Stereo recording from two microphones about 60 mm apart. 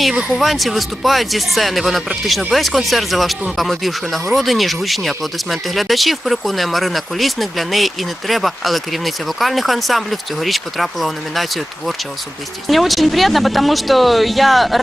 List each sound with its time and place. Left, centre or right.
0.3 s speech: centre